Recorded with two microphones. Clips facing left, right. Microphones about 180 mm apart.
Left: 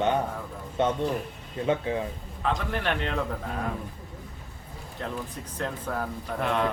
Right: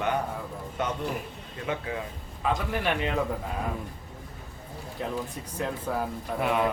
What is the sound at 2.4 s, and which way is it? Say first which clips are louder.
Speech: right 1 dB; 10° right (ahead or behind).